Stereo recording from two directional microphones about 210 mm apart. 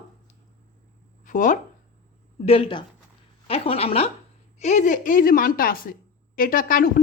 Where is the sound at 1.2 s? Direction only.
40° left (ahead or behind).